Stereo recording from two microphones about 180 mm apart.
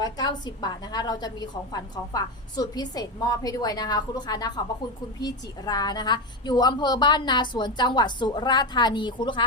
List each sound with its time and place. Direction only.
0.0 s a woman's voice: 25° left (ahead or behind)